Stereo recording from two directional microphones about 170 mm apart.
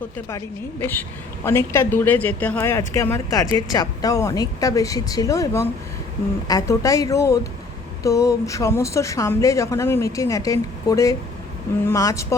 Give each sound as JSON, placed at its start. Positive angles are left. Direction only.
{"t": 0.3, "sound": "speech", "side_deg": 15}